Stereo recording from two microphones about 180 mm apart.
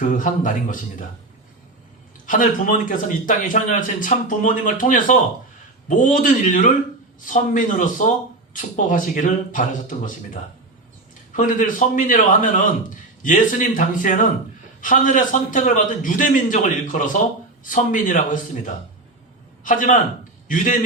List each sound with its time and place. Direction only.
0.0 s a man's voice: 45° left (ahead or behind)
2.2 s a man's voice: 45° left (ahead or behind)
11.3 s a man's voice: 45° left (ahead or behind)